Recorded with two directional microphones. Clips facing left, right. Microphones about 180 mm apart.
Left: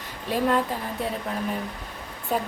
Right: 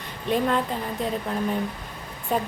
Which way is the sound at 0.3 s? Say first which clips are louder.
Even; 5° left (ahead or behind).